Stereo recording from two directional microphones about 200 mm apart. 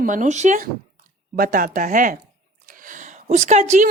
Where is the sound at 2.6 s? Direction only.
40° right (ahead or behind).